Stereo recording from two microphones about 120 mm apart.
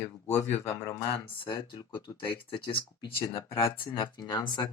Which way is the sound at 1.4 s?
40° left (ahead or behind).